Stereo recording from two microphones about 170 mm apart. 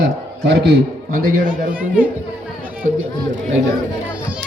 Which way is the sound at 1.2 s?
50° right (ahead or behind).